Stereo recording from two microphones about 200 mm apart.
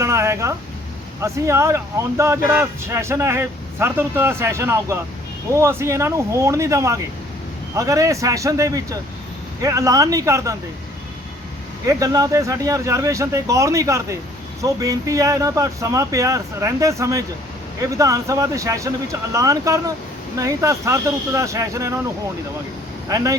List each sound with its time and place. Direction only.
0.0 s a sound: 15° right (ahead or behind)
1.2 s speech: 15° right (ahead or behind)
11.9 s speech: 15° right (ahead or behind)
23.0 s speech: 15° right (ahead or behind)